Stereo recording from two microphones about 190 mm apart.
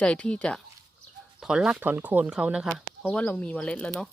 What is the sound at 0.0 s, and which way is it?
Speech, 5° left (ahead or behind).